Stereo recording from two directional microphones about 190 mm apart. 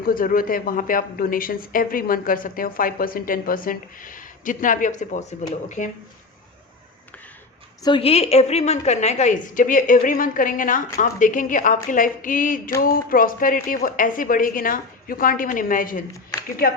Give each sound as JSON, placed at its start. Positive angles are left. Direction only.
{"t": 0.1, "sound": "a woman's voice", "side_deg": 45}
{"t": 7.9, "sound": "a woman's voice", "side_deg": 30}